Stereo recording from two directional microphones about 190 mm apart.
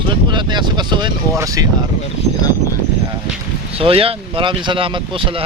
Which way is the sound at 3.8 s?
30° right (ahead or behind).